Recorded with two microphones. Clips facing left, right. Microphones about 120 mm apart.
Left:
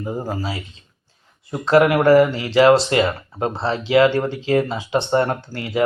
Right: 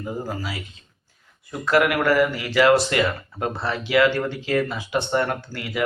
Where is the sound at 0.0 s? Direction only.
30° left (ahead or behind).